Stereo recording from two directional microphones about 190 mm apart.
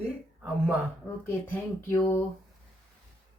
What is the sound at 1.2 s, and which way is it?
Speech, 15° left (ahead or behind).